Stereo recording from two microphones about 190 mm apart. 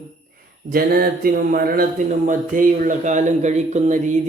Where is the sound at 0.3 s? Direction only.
50° right (ahead or behind).